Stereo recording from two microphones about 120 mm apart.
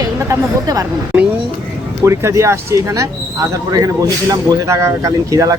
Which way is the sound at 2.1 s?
25° right (ahead or behind).